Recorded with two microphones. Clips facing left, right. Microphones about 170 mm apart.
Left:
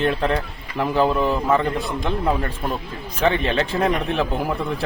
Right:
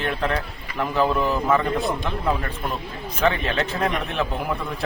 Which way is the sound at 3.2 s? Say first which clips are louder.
Left 2 dB; 30° left (ahead or behind).